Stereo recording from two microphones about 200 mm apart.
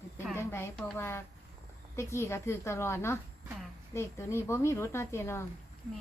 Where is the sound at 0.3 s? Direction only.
10° left (ahead or behind).